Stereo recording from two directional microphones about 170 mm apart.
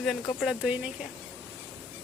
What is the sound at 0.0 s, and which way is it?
Speech, centre (ahead or behind).